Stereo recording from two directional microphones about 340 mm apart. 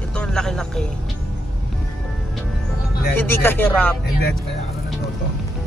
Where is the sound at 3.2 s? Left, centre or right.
Centre.